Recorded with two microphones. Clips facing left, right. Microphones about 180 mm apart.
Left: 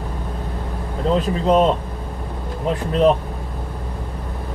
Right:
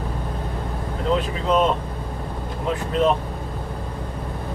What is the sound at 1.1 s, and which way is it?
Speech, 40° left (ahead or behind).